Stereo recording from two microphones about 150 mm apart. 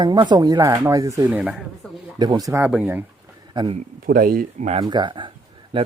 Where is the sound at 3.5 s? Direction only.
30° right (ahead or behind).